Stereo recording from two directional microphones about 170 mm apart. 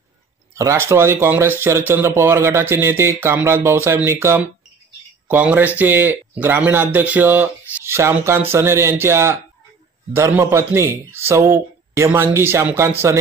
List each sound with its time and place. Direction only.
0.6 s a man's voice: 15° right (ahead or behind)